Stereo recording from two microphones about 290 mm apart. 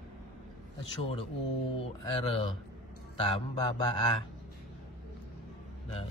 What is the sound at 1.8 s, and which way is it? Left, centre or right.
A man's voice, centre.